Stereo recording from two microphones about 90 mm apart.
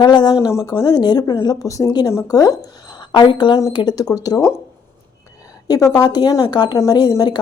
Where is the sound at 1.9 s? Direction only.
50° left (ahead or behind).